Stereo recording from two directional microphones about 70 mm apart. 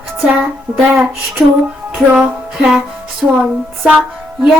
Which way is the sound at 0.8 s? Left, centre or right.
Right.